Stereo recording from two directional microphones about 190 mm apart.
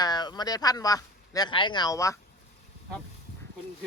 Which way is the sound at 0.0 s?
20° left (ahead or behind).